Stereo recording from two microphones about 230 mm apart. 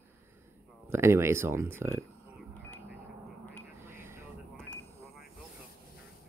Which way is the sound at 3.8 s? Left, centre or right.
Centre.